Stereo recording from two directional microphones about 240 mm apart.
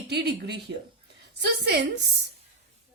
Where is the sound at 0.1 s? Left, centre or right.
Right.